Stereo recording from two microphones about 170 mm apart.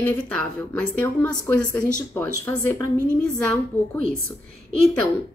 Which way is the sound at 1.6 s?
5° left (ahead or behind).